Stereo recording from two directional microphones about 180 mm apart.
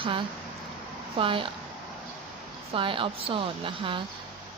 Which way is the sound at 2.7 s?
30° right (ahead or behind).